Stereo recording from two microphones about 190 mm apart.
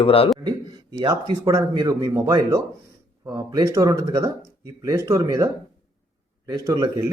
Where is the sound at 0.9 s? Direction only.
20° right (ahead or behind).